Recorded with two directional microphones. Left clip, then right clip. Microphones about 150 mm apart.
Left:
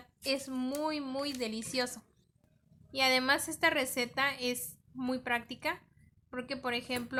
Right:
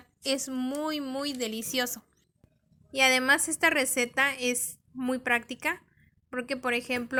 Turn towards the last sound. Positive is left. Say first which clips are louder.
# right 6 dB
turn(degrees=-35)  # may be behind; listen again after turning